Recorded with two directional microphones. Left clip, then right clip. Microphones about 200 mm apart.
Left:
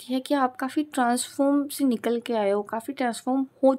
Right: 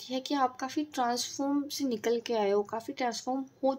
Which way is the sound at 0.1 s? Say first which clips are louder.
Left 5 dB; 40° left (ahead or behind).